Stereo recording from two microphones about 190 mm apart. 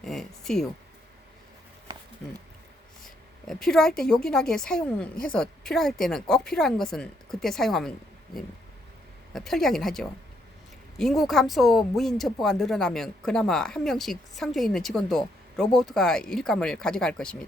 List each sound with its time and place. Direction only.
0.0 s speech: centre (ahead or behind)
3.0 s a woman's voice: centre (ahead or behind)